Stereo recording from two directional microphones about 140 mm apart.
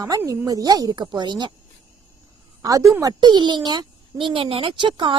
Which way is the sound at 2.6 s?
25° right (ahead or behind).